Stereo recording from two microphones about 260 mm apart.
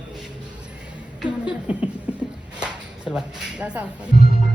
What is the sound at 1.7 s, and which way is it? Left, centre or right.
Speech, centre.